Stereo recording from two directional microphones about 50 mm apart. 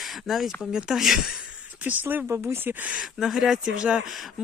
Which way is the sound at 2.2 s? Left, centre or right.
Right.